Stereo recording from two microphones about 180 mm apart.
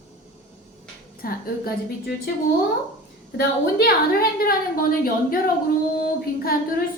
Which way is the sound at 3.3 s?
60° left (ahead or behind).